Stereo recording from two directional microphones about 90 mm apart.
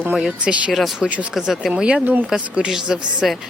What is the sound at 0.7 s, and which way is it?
Speech, centre (ahead or behind).